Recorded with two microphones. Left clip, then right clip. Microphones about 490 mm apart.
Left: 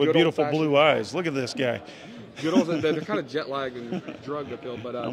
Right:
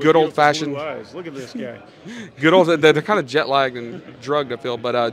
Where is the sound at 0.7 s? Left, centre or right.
Left.